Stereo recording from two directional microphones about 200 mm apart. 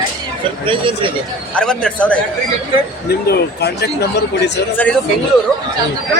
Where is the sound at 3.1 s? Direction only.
55° left (ahead or behind).